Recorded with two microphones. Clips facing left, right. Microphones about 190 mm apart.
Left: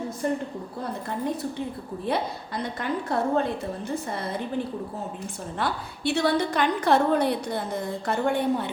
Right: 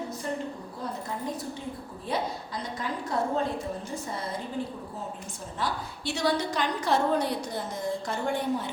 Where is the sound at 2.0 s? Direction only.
60° left (ahead or behind).